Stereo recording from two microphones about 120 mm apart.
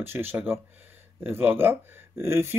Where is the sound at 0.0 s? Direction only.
20° right (ahead or behind).